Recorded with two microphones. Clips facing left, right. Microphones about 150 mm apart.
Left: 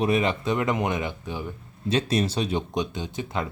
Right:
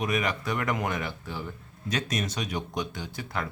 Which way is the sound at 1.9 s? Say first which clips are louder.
Left 7 dB; 30° left (ahead or behind).